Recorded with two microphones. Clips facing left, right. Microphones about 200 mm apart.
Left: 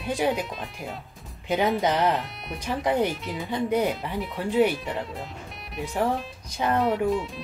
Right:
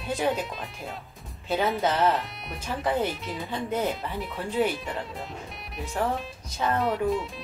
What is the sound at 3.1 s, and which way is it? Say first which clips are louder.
Speech: left 2 dB; centre (ahead or behind).